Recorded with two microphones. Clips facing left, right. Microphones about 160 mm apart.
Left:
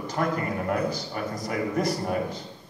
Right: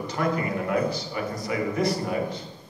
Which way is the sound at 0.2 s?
40° left (ahead or behind).